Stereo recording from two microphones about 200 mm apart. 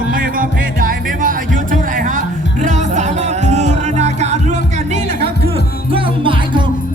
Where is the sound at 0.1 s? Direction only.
45° right (ahead or behind).